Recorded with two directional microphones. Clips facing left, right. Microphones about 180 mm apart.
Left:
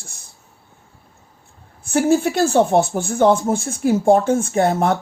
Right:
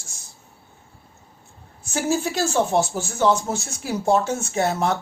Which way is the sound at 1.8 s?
55° left (ahead or behind).